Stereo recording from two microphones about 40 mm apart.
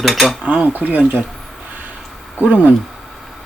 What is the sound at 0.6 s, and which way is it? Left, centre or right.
Speech, right.